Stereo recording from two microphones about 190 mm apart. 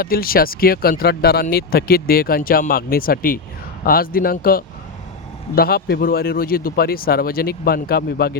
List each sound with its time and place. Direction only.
0.0 s speech: 50° left (ahead or behind)